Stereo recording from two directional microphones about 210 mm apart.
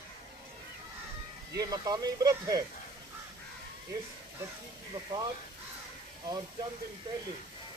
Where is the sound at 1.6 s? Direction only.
20° right (ahead or behind).